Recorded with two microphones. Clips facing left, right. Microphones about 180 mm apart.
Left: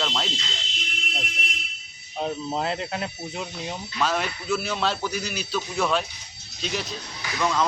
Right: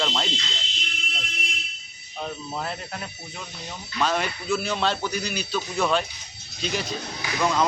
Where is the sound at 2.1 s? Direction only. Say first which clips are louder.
Left 5 dB; 30° left (ahead or behind).